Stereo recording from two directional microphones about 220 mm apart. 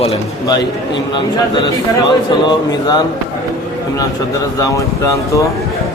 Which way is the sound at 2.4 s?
15° left (ahead or behind).